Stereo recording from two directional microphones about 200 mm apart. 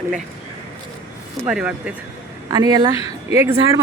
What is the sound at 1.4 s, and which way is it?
Speech, 5° right (ahead or behind).